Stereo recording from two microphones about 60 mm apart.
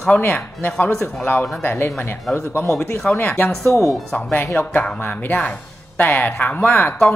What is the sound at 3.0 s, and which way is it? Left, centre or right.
Speech, left.